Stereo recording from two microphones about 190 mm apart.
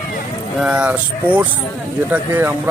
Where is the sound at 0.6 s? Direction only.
5° right (ahead or behind).